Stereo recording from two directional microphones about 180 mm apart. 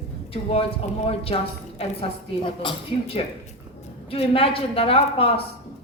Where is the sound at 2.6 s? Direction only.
25° left (ahead or behind).